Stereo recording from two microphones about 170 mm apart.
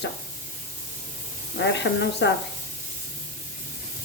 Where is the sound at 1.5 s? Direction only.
90° left.